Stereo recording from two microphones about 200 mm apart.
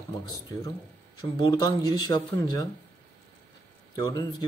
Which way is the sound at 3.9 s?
20° left (ahead or behind).